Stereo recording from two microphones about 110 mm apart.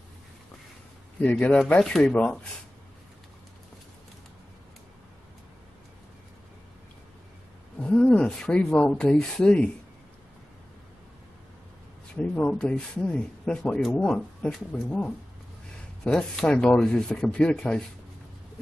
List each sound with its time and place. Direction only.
1.2 s speech: 10° left (ahead or behind)
7.8 s speech: 10° left (ahead or behind)
12.4 s speech: 10° left (ahead or behind)